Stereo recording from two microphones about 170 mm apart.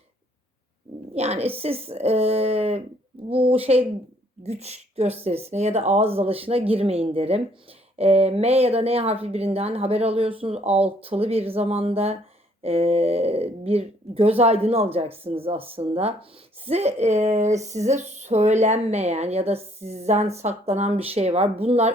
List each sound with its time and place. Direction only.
1.1 s speech: 40° right (ahead or behind)